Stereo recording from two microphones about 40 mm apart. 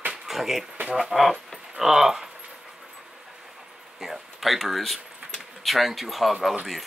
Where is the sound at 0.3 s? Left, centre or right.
Centre.